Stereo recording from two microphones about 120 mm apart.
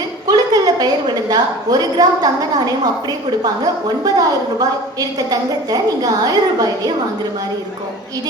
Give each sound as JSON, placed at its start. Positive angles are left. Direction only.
{"t": 0.3, "sound": "a woman's voice", "side_deg": -30}